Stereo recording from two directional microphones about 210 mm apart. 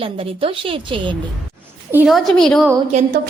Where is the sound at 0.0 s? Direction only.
25° right (ahead or behind).